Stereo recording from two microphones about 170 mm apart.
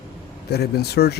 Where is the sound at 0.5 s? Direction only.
70° left (ahead or behind).